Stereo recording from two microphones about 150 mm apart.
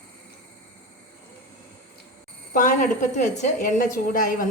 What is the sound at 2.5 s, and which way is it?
A woman's voice, 60° left (ahead or behind).